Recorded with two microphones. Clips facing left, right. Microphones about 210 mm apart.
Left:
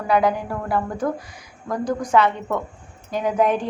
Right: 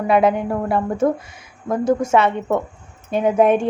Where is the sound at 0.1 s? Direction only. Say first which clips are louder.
Right 3 dB; 25° right (ahead or behind).